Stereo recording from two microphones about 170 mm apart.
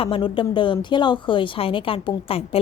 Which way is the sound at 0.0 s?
30° left (ahead or behind).